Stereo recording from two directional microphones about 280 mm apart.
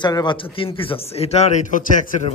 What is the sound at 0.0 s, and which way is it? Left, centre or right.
Speech, centre.